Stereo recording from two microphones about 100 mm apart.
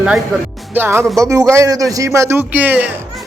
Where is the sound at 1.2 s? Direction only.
35° right (ahead or behind).